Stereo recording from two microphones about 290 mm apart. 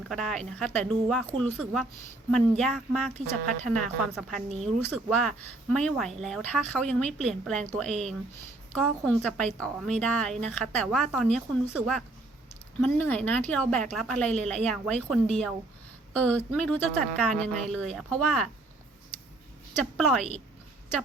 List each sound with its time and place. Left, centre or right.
0.1 s speech: centre
19.8 s speech: centre